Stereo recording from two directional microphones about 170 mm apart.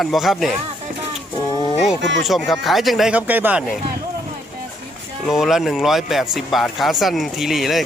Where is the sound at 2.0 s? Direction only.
90° right.